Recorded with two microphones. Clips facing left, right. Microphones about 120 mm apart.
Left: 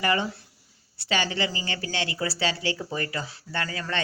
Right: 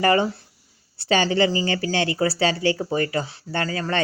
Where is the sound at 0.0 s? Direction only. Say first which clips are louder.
Right 7 dB; 40° right (ahead or behind).